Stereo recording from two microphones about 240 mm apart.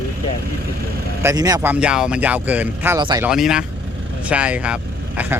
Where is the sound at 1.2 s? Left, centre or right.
Centre.